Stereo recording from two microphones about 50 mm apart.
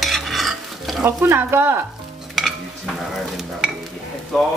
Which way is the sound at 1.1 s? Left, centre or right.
Right.